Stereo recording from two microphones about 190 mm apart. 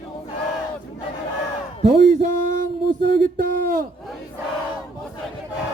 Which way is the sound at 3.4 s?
50° right (ahead or behind).